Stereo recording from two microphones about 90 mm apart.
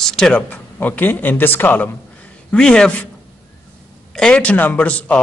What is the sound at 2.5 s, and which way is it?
Speech, 10° left (ahead or behind).